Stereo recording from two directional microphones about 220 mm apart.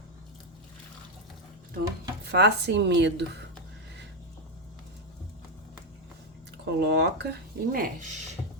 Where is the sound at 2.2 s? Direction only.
50° right (ahead or behind).